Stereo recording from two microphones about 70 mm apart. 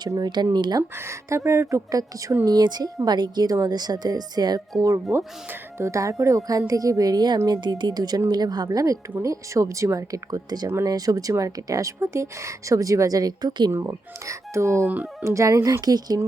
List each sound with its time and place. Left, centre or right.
0.2 s speech: right
0.8 s speech: right
3.5 s speech: right
5.1 s speech: right
13.7 s speech: right
15.8 s speech: right